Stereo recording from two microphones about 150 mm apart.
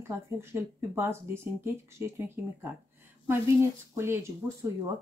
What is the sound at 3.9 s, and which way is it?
Speech, 15° right (ahead or behind).